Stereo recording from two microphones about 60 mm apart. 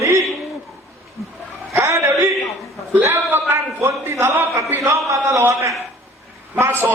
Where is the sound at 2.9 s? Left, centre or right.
Right.